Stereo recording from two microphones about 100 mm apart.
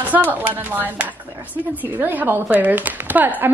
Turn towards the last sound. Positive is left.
turn(degrees=-20)  # may be behind; listen again after turning